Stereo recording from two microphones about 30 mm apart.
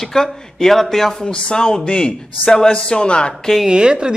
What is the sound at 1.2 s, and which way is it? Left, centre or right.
A man's voice, left.